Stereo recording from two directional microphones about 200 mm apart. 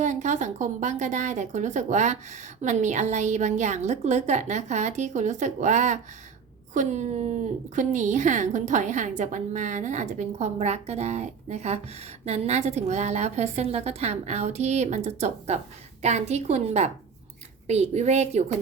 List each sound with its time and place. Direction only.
0.0 s speech: 35° right (ahead or behind)